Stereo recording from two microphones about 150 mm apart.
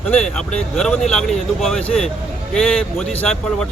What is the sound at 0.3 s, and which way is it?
Speech, 5° left (ahead or behind).